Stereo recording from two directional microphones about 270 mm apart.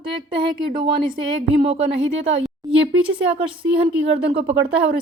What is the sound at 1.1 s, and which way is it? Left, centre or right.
Speech, right.